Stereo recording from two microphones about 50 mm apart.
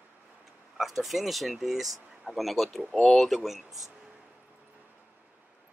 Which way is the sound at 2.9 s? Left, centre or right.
Centre.